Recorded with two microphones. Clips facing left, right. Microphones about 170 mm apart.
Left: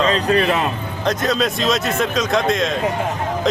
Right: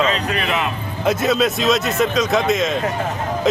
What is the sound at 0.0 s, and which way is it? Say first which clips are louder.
Speech: left 4 dB; 35° left (ahead or behind).